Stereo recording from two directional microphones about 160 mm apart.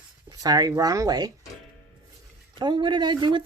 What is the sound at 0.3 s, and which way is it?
Speech, 25° right (ahead or behind).